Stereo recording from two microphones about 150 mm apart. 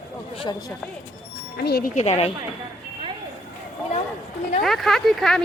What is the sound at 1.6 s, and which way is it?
Speech, 90° left.